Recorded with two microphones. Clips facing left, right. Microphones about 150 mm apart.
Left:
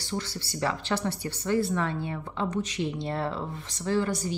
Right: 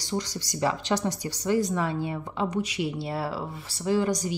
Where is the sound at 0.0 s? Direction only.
15° right (ahead or behind).